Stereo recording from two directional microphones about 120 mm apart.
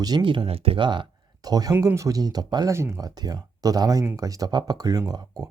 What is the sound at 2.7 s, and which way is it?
Speech, 25° right (ahead or behind).